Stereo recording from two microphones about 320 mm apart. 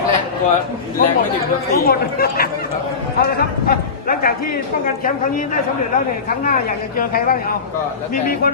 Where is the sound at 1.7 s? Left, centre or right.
Left.